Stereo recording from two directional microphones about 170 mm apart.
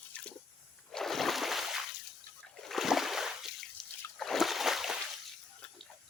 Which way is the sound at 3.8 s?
Centre (ahead or behind).